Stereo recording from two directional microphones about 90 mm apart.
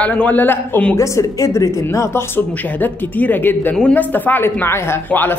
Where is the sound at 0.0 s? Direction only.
15° left (ahead or behind).